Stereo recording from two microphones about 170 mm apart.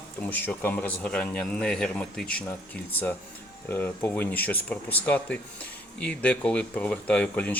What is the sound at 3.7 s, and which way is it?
Speech, 15° left (ahead or behind).